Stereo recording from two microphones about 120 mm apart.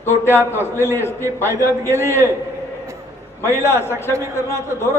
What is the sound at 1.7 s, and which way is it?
Speech, 20° right (ahead or behind).